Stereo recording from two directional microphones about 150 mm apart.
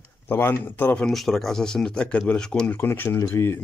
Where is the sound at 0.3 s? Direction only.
15° left (ahead or behind).